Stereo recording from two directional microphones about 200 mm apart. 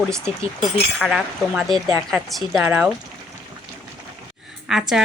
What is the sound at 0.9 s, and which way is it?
Speech, centre (ahead or behind).